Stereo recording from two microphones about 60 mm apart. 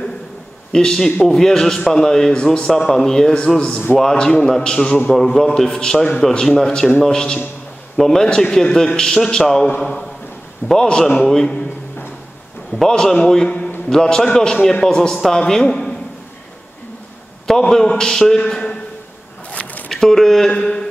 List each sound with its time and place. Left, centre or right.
0.7 s a man's voice: centre
5.1 s a man's voice: centre
12.7 s a man's voice: centre
17.5 s a man's voice: centre
19.5 s a sound: left
19.9 s a man's voice: centre